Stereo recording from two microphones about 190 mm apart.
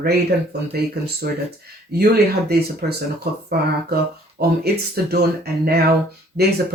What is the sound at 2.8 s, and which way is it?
Speech, 50° right (ahead or behind).